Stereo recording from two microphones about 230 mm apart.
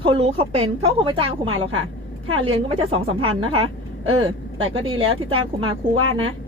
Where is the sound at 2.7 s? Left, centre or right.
Right.